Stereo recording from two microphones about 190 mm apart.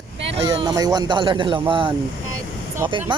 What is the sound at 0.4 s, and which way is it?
Speech, 20° right (ahead or behind).